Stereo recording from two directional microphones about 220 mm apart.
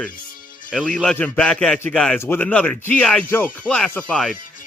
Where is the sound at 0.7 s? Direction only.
Centre (ahead or behind).